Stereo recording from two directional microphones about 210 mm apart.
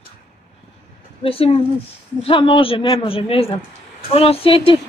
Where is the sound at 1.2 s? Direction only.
25° left (ahead or behind).